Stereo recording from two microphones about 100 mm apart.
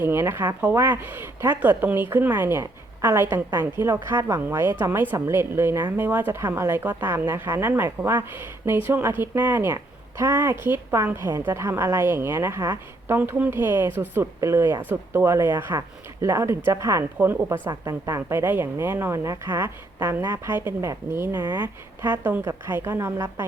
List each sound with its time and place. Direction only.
0.0 s a woman's voice: 25° right (ahead or behind)
17.2 s a woman's voice: 20° right (ahead or behind)
17.7 s a woman's voice: 40° right (ahead or behind)
18.3 s a woman's voice: 20° right (ahead or behind)